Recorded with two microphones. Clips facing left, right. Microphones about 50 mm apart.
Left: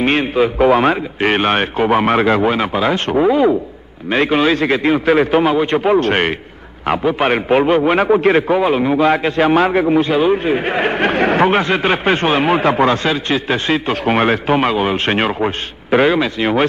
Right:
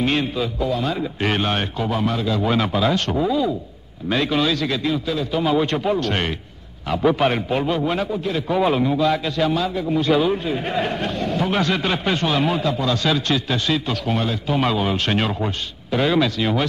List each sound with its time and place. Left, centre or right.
0.0 s a man's voice: left
0.6 s a man's voice: left
1.2 s a man's voice: left
2.4 s a man's voice: left
5.9 s a man's voice: left
8.2 s a man's voice: left
8.5 s a man's voice: left
8.8 s a man's voice: left
9.5 s a man's voice: left
10.0 s a man's voice: left
11.5 s a man's voice: left
13.0 s a man's voice: left
14.0 s a man's voice: left
14.6 s a man's voice: left